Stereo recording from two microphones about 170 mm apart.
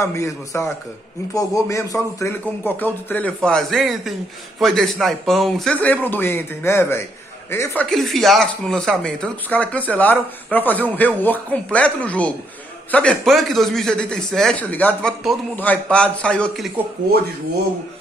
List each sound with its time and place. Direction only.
0.0 s speech: 15° left (ahead or behind)